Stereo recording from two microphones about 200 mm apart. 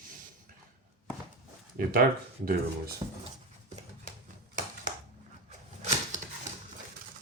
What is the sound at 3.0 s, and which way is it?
Speech, 25° right (ahead or behind).